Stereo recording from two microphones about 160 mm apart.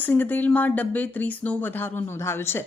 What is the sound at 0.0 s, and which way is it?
Speech, 10° left (ahead or behind).